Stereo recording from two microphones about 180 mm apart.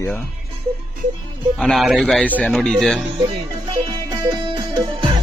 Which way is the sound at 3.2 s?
25° right (ahead or behind).